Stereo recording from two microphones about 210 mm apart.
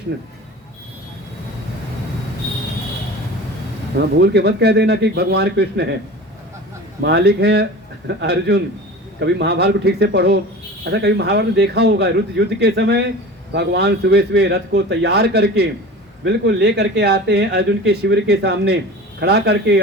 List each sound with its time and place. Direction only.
4.2 s speech: 55° right (ahead or behind)
7.0 s speech: 50° right (ahead or behind)